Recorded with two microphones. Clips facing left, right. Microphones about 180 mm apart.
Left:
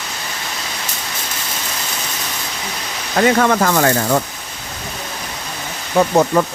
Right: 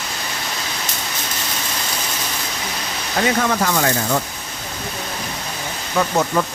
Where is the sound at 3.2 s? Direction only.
60° left (ahead or behind).